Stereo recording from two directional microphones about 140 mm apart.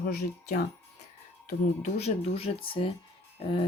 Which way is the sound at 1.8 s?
50° left (ahead or behind).